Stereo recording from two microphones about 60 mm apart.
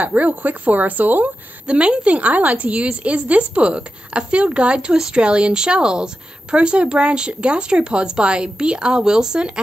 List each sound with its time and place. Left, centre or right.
0.0 s a woman's voice: right; by 9.5 s centre